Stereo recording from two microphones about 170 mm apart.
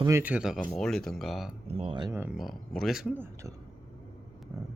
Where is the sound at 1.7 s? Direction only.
35° right (ahead or behind).